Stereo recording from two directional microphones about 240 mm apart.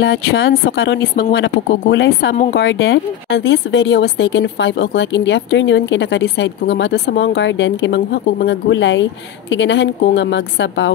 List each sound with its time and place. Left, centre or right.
0.0 s speech: left